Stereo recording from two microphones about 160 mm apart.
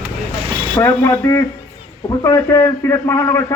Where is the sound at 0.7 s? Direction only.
20° left (ahead or behind).